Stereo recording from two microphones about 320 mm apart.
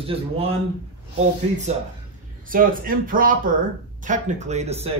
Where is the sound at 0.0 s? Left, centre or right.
Centre.